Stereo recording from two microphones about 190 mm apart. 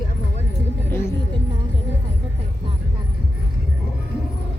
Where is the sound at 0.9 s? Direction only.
15° left (ahead or behind).